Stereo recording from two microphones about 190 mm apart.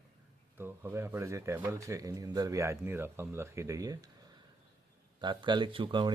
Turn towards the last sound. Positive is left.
turn(degrees=-25)  # may be behind; listen again after turning